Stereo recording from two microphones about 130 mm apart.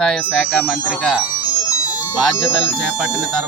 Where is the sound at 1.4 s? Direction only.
30° left (ahead or behind).